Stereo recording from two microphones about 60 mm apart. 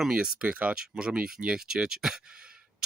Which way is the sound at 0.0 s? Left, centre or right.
Centre.